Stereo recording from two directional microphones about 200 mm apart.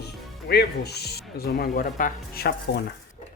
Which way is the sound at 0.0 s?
55° left (ahead or behind).